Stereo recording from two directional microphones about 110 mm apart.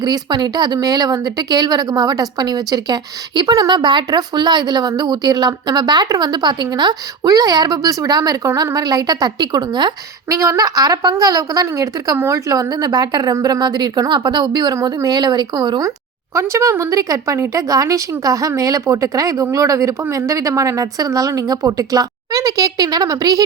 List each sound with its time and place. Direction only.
0.0 s speech: 40° right (ahead or behind)
10.3 s speech: 30° right (ahead or behind)
16.3 s speech: 25° right (ahead or behind)